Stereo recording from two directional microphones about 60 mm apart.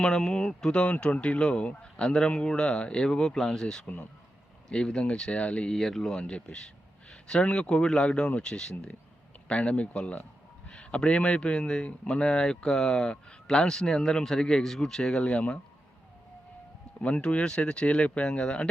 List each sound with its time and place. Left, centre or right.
0.0 s speech: centre
5.7 s speech: centre
17.0 s speech: centre